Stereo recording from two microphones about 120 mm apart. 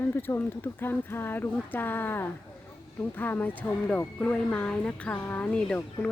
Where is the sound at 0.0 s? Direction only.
20° left (ahead or behind).